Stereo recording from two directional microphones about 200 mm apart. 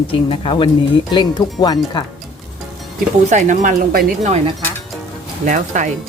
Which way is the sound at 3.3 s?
40° right (ahead or behind).